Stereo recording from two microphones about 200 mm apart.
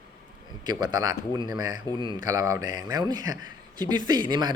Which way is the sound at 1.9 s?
20° left (ahead or behind).